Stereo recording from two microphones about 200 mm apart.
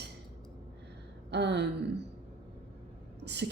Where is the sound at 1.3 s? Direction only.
55° right (ahead or behind).